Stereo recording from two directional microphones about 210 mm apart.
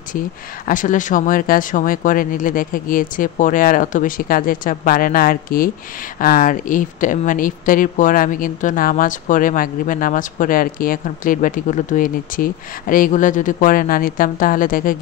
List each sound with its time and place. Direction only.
0.7 s speech: 40° left (ahead or behind)